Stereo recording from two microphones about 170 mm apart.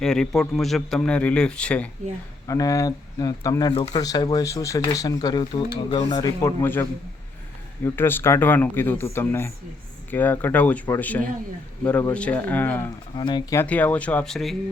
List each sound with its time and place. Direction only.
0.0 s speech: 5° left (ahead or behind)
2.5 s speech: 20° left (ahead or behind)
7.9 s speech: 15° left (ahead or behind)
13.1 s speech: 25° left (ahead or behind)
13.7 s speech: 10° left (ahead or behind)